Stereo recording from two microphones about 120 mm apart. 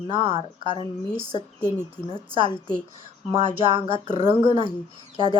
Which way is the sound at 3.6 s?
45° right (ahead or behind).